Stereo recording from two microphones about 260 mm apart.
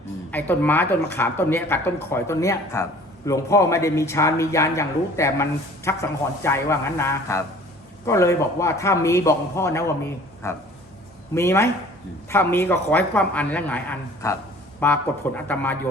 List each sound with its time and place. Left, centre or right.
0.3 s speech: centre